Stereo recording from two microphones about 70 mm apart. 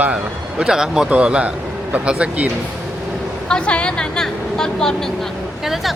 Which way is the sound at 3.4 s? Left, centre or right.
Centre.